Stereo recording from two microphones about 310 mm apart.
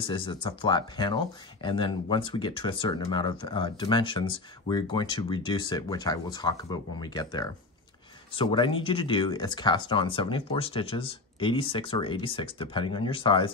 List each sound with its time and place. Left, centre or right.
0.0 s speech: centre